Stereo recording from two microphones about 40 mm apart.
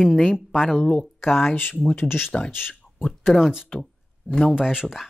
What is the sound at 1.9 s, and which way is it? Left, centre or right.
Speech, left.